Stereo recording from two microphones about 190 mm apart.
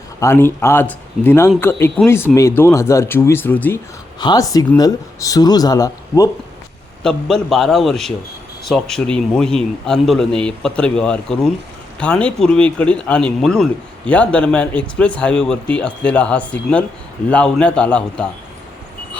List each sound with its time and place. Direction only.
0.2 s speech: 15° left (ahead or behind)
4.2 s speech: 20° left (ahead or behind)
7.0 s a man's voice: 5° left (ahead or behind)